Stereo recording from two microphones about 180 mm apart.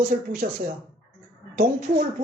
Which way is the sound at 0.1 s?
55° right (ahead or behind).